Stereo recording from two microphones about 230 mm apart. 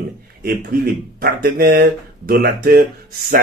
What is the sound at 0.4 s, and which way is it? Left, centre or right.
A man's voice, right.